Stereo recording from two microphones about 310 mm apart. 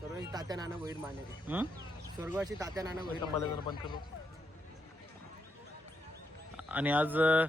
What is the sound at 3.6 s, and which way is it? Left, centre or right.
Speech, centre.